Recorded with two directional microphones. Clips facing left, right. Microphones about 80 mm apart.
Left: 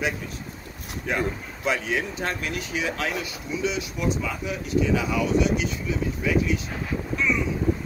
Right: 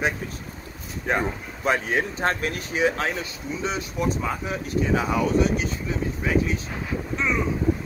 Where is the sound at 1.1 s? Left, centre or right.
Right.